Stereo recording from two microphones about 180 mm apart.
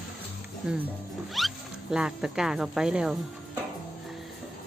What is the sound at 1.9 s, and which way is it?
Speech, 5° right (ahead or behind).